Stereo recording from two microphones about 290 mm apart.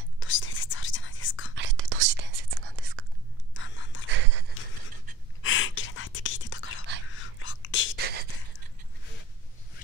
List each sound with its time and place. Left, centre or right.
0.2 s whispering: left
1.5 s whispering: right
3.5 s gasp: left
4.1 s a sound: right
5.4 s whispering: left
8.0 s a sound: right